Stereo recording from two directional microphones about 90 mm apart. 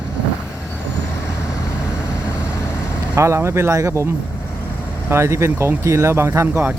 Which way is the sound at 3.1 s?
30° right (ahead or behind).